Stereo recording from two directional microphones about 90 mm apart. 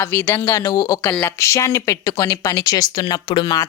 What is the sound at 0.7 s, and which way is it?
Speech, 45° left (ahead or behind).